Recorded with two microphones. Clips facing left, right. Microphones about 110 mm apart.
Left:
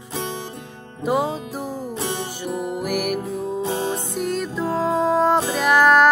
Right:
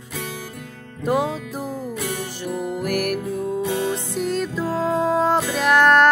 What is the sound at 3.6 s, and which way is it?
Music, 30° left (ahead or behind).